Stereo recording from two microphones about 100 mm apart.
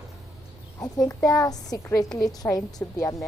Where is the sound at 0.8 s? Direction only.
40° left (ahead or behind).